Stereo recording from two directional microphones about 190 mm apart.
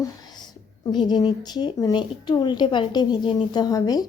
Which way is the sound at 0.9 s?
20° left (ahead or behind).